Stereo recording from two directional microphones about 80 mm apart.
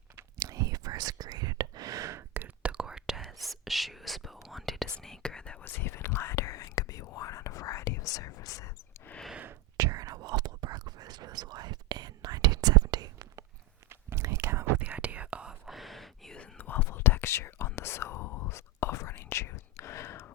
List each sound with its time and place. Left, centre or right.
0.3 s whispering: right
2.4 s whispering: centre
5.6 s whispering: left
9.1 s a sound: left
9.7 s whispering: right
13.9 s whispering: right
14.8 s whispering: centre
16.4 s whispering: left